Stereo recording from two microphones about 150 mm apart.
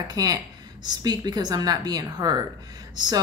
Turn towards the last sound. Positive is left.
turn(degrees=-30)  # may be behind; listen again after turning